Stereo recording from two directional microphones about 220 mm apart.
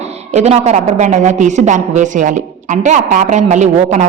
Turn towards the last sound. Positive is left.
turn(degrees=-30)  # may be behind; listen again after turning